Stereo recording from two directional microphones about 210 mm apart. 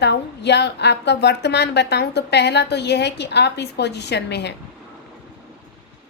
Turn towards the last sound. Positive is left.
turn(degrees=55)  # may be behind; listen again after turning